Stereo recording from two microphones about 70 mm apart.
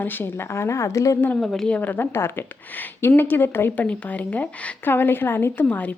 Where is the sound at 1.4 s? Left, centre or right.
Centre.